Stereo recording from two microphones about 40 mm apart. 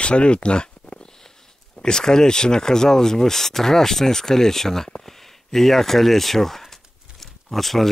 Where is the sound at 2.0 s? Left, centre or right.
Centre.